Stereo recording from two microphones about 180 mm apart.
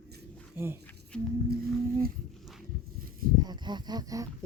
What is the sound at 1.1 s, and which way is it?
Speech, 5° left (ahead or behind).